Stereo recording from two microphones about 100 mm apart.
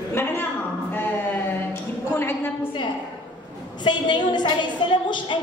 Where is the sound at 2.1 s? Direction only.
20° left (ahead or behind).